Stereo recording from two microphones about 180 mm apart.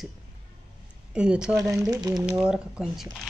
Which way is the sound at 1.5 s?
20° right (ahead or behind).